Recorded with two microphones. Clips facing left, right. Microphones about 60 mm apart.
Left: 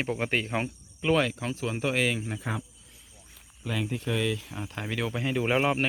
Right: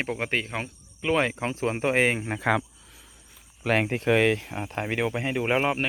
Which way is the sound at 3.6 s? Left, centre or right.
Right.